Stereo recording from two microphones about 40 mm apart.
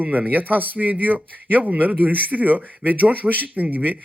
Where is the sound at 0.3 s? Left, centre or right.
Right.